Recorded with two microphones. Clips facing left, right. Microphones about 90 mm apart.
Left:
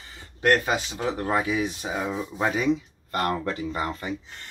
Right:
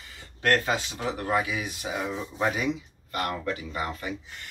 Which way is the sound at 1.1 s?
30° left (ahead or behind).